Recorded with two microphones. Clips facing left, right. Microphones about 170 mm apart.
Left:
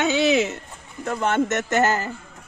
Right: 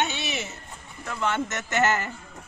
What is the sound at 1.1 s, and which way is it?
Speech, 45° left (ahead or behind).